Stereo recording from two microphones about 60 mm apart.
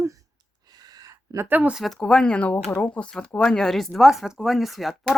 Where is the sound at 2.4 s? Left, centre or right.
Left.